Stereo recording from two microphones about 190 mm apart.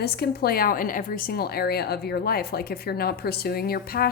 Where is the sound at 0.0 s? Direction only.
55° left (ahead or behind).